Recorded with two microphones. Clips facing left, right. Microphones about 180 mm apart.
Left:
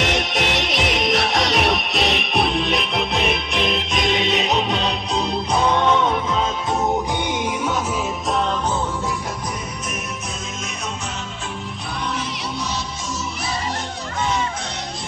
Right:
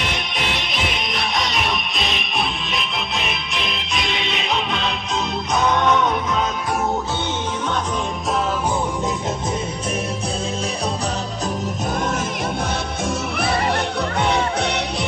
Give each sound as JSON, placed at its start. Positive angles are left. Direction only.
{"t": 0.0, "sound": "music", "side_deg": 80}
{"t": 5.6, "sound": "music", "side_deg": 30}
{"t": 13.4, "sound": "music", "side_deg": -60}